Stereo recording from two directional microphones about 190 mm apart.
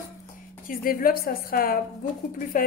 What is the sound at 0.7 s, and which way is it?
A woman's voice, 50° left (ahead or behind).